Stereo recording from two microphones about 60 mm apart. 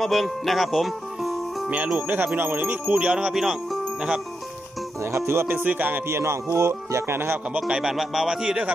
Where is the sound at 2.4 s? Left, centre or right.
Right.